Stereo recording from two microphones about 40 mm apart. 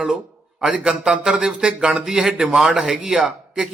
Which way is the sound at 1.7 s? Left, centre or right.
Right.